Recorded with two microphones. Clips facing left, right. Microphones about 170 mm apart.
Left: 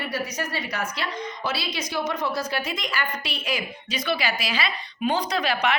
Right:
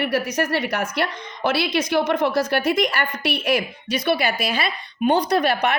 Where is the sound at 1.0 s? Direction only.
65° right (ahead or behind).